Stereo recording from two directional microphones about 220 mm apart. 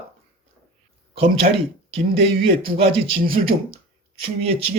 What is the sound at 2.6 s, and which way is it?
Speech, 25° right (ahead or behind).